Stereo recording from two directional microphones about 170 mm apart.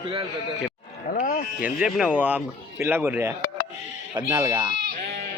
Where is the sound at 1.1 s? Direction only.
55° left (ahead or behind).